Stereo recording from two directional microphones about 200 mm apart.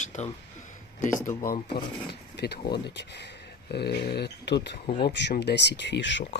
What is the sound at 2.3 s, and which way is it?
Speech, 55° left (ahead or behind).